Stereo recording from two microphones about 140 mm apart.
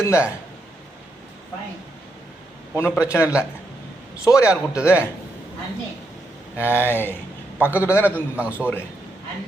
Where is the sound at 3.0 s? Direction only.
20° left (ahead or behind).